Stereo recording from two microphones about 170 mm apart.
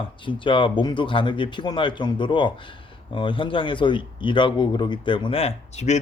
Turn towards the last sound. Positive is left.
turn(degrees=40)  # may be behind; listen again after turning